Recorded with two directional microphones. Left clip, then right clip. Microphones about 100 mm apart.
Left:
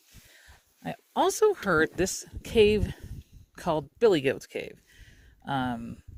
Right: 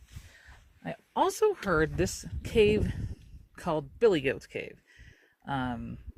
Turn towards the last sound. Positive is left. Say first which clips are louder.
# left 3 dB
turn(degrees=45)  # may be behind; listen again after turning